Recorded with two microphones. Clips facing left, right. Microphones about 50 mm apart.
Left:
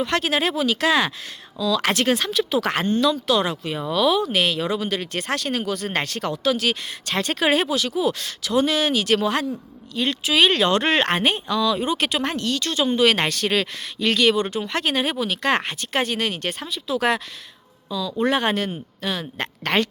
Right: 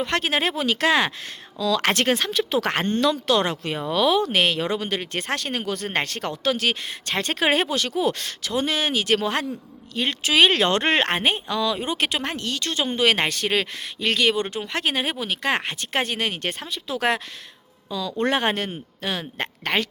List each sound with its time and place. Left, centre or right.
0.0 s speech: right
3.9 s speech: right
8.4 s speech: right
10.9 s speech: right
15.8 s speech: right
18.3 s speech: right
19.6 s speech: centre